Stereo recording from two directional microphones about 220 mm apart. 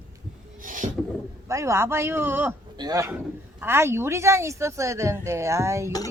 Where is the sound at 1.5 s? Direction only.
15° right (ahead or behind).